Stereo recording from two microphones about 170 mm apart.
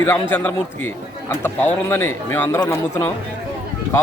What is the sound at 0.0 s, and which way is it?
Speech, 15° left (ahead or behind).